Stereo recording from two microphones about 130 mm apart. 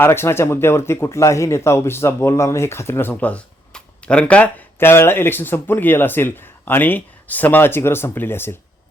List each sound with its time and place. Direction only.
0.0 s speech: 20° left (ahead or behind)